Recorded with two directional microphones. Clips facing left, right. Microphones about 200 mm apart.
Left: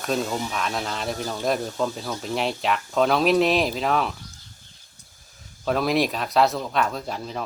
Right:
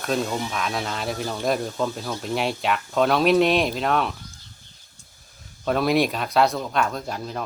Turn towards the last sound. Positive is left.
turn(degrees=0)  # may be behind; listen again after turning